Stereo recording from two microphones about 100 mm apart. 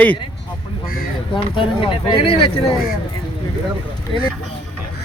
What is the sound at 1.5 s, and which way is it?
Speech, 60° left (ahead or behind).